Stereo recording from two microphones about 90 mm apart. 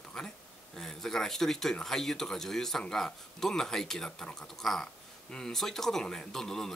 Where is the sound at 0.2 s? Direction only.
5° left (ahead or behind).